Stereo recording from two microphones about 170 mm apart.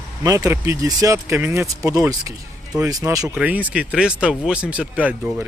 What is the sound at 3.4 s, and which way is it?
Speech, 5° right (ahead or behind).